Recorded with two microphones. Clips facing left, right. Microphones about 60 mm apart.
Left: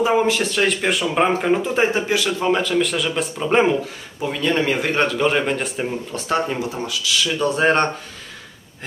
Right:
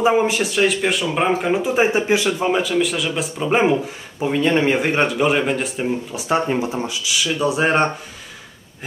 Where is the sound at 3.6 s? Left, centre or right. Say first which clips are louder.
Right 2 dB; centre.